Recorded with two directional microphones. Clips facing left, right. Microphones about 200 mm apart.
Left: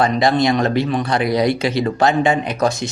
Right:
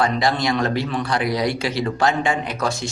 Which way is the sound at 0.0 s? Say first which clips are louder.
Left 5 dB; 20° left (ahead or behind).